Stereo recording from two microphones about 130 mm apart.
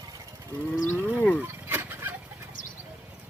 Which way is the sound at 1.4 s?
15° right (ahead or behind).